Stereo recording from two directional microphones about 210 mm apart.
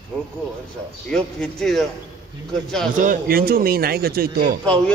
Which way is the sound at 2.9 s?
40° right (ahead or behind).